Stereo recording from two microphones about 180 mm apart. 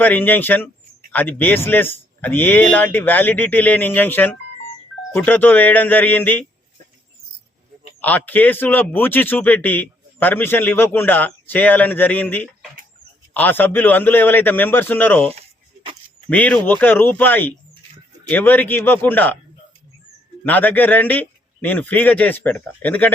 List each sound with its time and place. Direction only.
0.0 s a man's voice: 10° left (ahead or behind)
8.0 s a man's voice: 10° left (ahead or behind)
15.3 s a sound: 30° right (ahead or behind)
16.3 s a man's voice: 10° left (ahead or behind)
20.4 s a man's voice: 10° left (ahead or behind)